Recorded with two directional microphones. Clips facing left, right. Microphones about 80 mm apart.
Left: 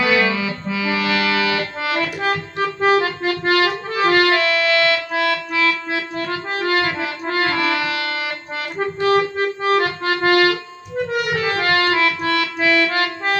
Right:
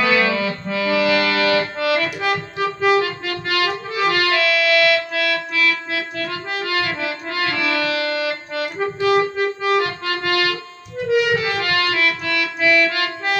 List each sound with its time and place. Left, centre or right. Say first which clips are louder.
0.0 s accordion: even; centre
1.3 s accordion: right 2 dB; centre
2.2 s accordion: even; left
7.8 s music: right 2 dB; left
9.6 s accordion: left 3 dB; left
10.9 s music: right 3 dB; left
11.5 s music: left 3 dB; left